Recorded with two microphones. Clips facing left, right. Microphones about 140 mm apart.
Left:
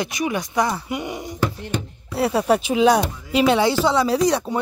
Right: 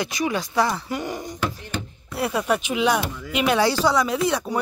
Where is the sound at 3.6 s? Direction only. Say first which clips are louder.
Left 2 dB; 20° left (ahead or behind).